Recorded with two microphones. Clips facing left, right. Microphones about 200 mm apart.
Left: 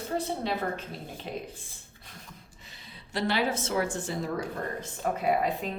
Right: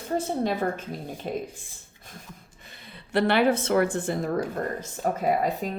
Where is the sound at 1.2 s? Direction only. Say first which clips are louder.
Right 6 dB; 45° right (ahead or behind).